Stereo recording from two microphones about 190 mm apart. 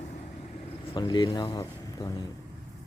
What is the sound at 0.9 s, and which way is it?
Speech, 25° left (ahead or behind).